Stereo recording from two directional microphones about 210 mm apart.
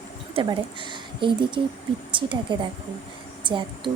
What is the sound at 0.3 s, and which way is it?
A woman's voice, 25° right (ahead or behind).